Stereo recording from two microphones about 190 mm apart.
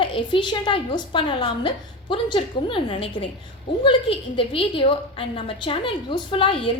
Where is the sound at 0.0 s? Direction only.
25° left (ahead or behind).